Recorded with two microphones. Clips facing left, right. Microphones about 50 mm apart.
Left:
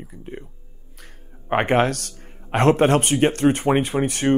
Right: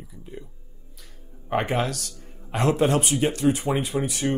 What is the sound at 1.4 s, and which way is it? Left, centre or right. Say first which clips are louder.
Speech: left 6 dB; left.